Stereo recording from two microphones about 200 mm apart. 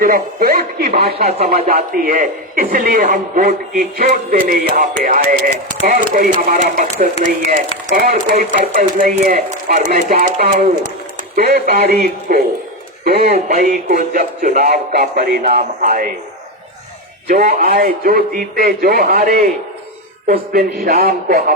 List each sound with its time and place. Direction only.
0.0 s speech: 45° right (ahead or behind)
13.3 s speech: 35° right (ahead or behind)
17.2 s speech: 45° right (ahead or behind)